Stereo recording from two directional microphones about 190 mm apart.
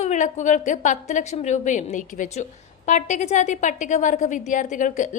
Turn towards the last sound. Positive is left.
turn(degrees=40)  # may be behind; listen again after turning